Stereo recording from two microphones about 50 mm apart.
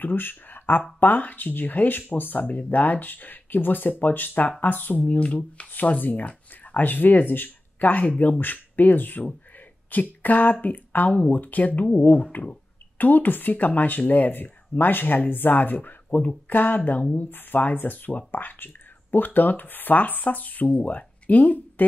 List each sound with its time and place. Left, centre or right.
0.0 s speech: left
5.2 s speech: left
5.7 s speech: left